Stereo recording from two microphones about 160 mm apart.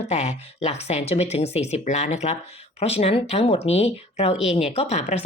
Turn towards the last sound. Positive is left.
turn(degrees=40)  # may be behind; listen again after turning